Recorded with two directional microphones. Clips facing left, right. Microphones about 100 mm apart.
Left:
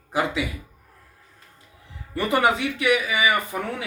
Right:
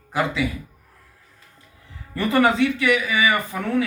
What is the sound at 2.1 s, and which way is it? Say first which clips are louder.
Speech: right 2 dB; 20° left (ahead or behind).